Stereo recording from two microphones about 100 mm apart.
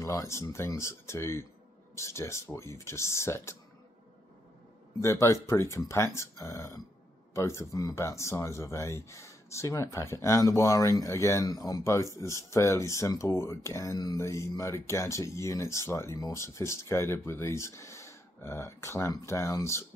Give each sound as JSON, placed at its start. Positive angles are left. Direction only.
{"t": 0.0, "sound": "speech", "side_deg": 30}
{"t": 5.0, "sound": "speech", "side_deg": 30}
{"t": 13.9, "sound": "a sound", "side_deg": 40}
{"t": 14.2, "sound": "speech", "side_deg": 30}